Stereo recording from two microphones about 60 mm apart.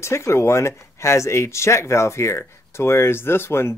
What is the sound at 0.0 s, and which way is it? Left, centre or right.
Speech, left.